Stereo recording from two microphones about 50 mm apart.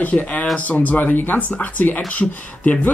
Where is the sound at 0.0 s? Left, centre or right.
Left.